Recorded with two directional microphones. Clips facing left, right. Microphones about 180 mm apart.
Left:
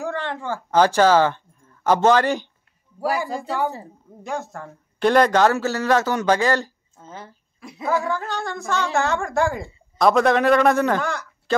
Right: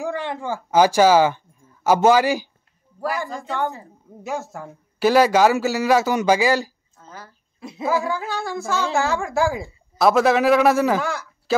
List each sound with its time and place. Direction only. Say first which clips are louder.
0.0 s speech: right 1 dB; 15° right (ahead or behind)
3.0 s speech: left 2 dB; 10° left (ahead or behind)
4.2 s a man's voice: right 1 dB; 5° right (ahead or behind)
7.0 s a sound: left 3 dB; 25° left (ahead or behind)
7.8 s a woman's voice: right 1 dB; centre (ahead or behind)